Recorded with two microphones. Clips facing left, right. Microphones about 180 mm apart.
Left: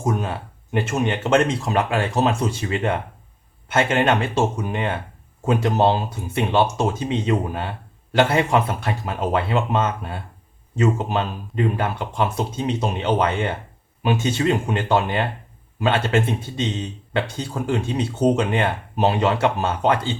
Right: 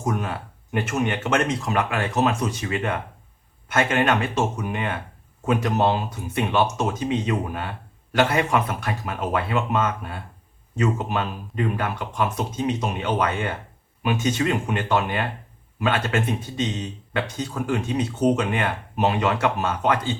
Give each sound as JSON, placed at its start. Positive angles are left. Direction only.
{"t": 0.0, "sound": "speech", "side_deg": 30}